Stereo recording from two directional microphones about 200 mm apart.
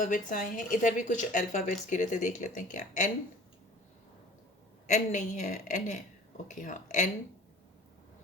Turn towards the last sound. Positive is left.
turn(degrees=40)  # may be behind; listen again after turning